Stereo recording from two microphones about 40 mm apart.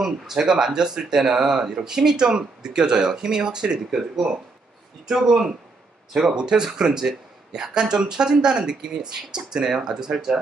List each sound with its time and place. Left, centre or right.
0.0 s speech: centre